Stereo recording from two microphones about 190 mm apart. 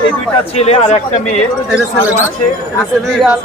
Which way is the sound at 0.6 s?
35° left (ahead or behind).